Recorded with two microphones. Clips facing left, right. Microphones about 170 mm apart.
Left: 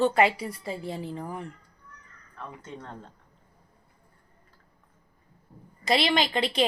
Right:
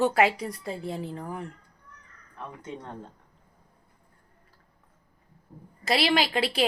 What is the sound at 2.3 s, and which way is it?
Speech, 15° right (ahead or behind).